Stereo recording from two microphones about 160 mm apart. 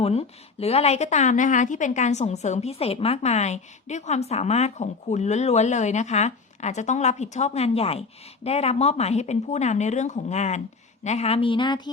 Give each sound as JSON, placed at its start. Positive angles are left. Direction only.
{"t": 0.0, "sound": "a woman's voice", "side_deg": 40}